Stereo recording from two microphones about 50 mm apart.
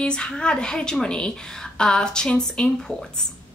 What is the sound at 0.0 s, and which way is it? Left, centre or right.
A woman's voice, centre.